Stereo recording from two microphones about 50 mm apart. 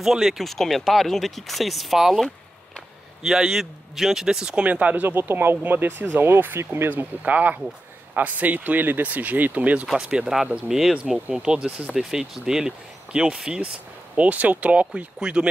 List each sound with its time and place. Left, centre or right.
0.0 s a man's voice: centre
0.4 s a man's voice: centre
4.6 s speech: right
5.1 s speech: right
6.9 s speech: right
9.9 s a man's voice: centre
14.1 s speech: right
15.1 s a man's voice: centre